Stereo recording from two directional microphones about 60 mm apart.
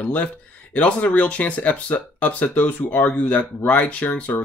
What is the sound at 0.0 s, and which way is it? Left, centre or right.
Speech, left.